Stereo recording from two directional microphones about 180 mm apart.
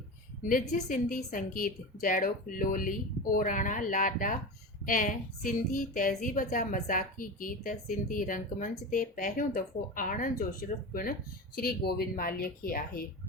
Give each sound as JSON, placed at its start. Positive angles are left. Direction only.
{"t": 0.4, "sound": "a woman's voice", "side_deg": 50}